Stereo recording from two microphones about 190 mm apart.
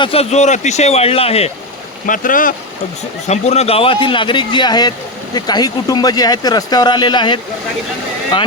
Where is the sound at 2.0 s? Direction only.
45° left (ahead or behind).